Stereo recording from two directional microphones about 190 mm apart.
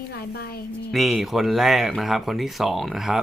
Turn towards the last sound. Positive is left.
turn(degrees=0)  # may be behind; listen again after turning